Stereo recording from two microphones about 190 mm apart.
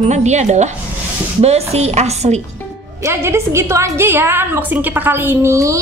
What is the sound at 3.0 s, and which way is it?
A woman's voice, 15° right (ahead or behind).